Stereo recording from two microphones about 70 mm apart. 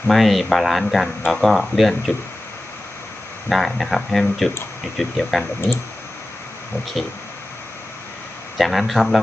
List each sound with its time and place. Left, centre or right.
0.1 s speech: centre
3.5 s speech: centre
7.0 s speech: centre
8.5 s speech: centre